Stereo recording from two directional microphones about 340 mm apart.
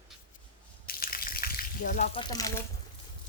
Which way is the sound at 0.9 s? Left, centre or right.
Left.